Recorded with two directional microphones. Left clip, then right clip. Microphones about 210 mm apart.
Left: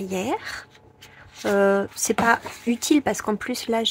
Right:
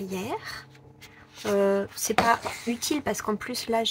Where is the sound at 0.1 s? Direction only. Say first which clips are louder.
Left 8 dB; 35° left (ahead or behind).